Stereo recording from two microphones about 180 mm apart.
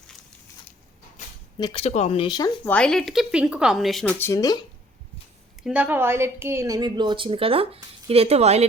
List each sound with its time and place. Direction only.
1.2 s a sound: 40° left (ahead or behind)
1.5 s speech: 25° left (ahead or behind)
1.8 s speech: 40° left (ahead or behind)
2.6 s speech: 5° left (ahead or behind)
4.2 s speech: 20° left (ahead or behind)
5.6 s speech: 10° right (ahead or behind); by 8.6 s 35° right (ahead or behind)